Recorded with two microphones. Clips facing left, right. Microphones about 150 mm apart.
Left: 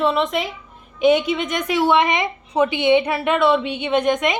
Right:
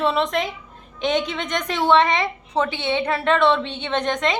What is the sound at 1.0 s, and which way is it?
A woman's voice, 10° left (ahead or behind).